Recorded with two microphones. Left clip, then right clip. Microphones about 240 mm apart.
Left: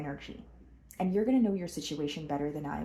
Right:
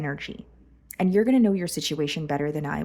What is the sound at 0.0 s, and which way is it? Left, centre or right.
Speech, right.